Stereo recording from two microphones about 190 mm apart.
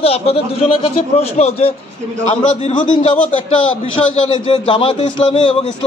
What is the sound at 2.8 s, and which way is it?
Speech, 25° left (ahead or behind).